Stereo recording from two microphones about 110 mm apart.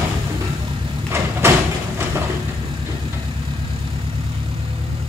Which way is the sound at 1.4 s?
25° right (ahead or behind).